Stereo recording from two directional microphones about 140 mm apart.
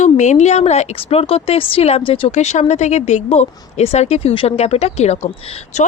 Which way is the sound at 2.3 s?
55° left (ahead or behind).